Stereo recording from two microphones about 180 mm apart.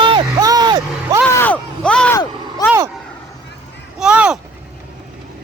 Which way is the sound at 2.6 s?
15° left (ahead or behind).